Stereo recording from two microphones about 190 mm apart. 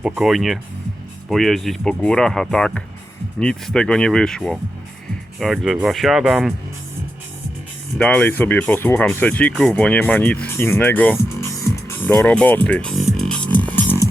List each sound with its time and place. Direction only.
0.0 s speech: 5° right (ahead or behind)
7.9 s speech: 5° left (ahead or behind)